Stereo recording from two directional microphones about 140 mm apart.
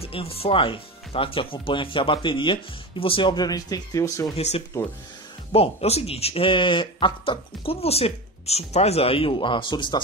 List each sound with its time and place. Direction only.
0.0 s speech: 45° left (ahead or behind); by 4.3 s 25° left (ahead or behind)
4.4 s speech: 50° left (ahead or behind); by 10.0 s 35° left (ahead or behind)